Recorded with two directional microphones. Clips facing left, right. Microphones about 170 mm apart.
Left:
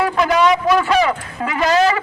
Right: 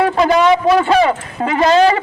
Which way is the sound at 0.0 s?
30° right (ahead or behind).